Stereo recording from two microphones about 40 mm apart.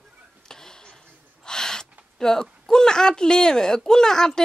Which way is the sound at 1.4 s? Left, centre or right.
Centre.